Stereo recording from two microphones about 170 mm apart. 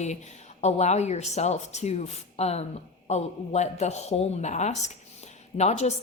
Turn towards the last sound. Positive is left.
turn(degrees=40)  # may be behind; listen again after turning